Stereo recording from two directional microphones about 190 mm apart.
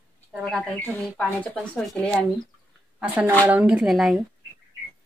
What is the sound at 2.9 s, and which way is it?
A woman's voice, 10° right (ahead or behind).